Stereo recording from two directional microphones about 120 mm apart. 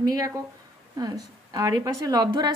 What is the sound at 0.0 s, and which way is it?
A woman's voice, 30° right (ahead or behind).